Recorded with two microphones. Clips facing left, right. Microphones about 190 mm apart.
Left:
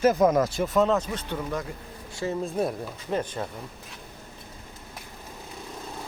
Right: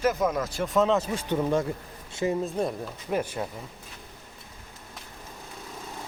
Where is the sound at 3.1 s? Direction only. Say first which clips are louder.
Even; 10° right (ahead or behind).